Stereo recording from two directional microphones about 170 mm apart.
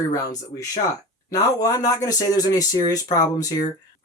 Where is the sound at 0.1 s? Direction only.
20° left (ahead or behind).